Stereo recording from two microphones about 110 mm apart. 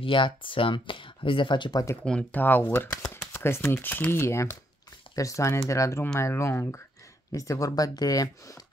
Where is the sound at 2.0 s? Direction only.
10° left (ahead or behind).